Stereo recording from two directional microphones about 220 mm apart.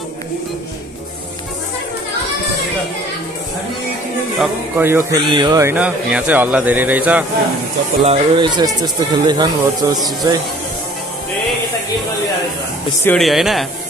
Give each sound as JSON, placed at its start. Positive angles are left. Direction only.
{"t": 4.4, "sound": "speech", "side_deg": -10}
{"t": 8.0, "sound": "speech", "side_deg": -25}
{"t": 13.0, "sound": "speech", "side_deg": 5}